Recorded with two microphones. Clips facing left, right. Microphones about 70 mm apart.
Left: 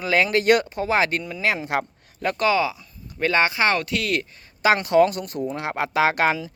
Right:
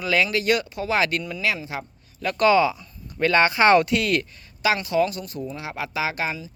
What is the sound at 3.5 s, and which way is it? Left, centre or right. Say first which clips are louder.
Speech: right 5 dB; centre.